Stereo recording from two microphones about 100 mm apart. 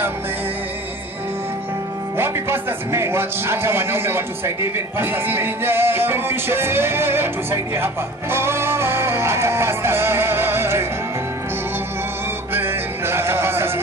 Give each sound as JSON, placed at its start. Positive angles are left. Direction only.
{"t": 2.1, "sound": "a man's voice", "side_deg": -25}
{"t": 12.5, "sound": "music", "side_deg": -25}